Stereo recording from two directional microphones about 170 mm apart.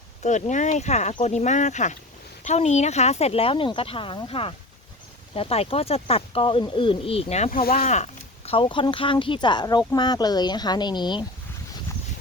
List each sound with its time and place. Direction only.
0.2 s speech: 45° left (ahead or behind); by 11.3 s 25° left (ahead or behind)